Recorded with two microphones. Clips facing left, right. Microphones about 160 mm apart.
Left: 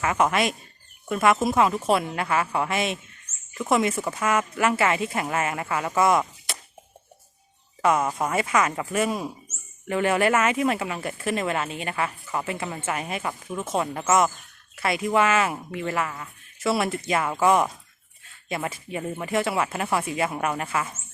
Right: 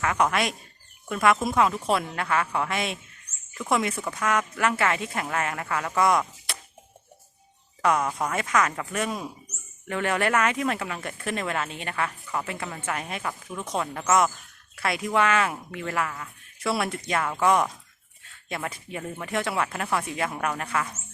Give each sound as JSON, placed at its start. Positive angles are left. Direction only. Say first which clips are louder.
{"t": 0.0, "sound": "speech", "louder": "left 2 dB", "side_deg": 5}
{"t": 7.8, "sound": "speech", "louder": "left 2 dB", "side_deg": 5}